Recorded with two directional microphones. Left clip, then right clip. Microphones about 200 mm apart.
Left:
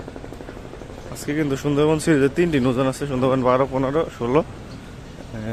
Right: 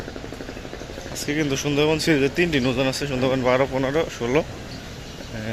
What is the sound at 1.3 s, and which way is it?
Speech, 25° left (ahead or behind).